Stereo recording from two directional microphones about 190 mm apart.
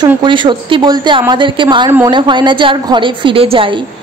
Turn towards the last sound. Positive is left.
turn(degrees=-30)  # may be behind; listen again after turning